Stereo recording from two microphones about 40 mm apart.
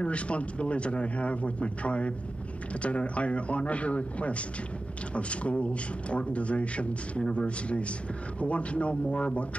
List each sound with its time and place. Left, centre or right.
0.0 s a man's voice: left